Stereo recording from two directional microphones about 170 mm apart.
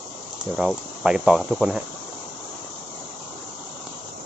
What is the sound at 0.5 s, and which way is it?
Speech, centre (ahead or behind).